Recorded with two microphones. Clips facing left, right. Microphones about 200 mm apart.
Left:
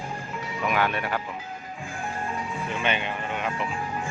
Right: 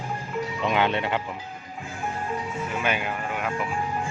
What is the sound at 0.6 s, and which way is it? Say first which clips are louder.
Speech: right 1 dB; 25° right (ahead or behind).